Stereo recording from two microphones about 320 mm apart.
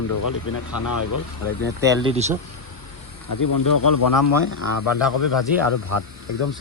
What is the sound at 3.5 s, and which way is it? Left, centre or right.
Speech, left.